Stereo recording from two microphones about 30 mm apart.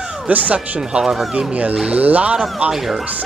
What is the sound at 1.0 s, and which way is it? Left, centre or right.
Speech, centre.